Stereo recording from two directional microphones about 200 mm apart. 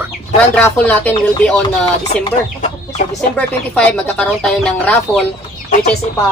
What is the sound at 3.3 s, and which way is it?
Speech, 5° left (ahead or behind).